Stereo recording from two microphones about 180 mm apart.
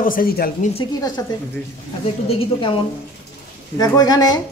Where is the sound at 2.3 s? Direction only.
30° left (ahead or behind).